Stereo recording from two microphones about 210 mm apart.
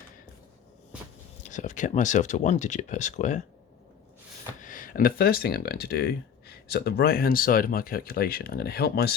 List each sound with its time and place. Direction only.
1.5 s speech: 35° left (ahead or behind)
4.6 s speech: 40° left (ahead or behind)